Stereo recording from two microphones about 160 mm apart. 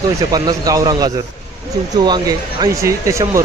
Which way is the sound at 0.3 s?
25° right (ahead or behind).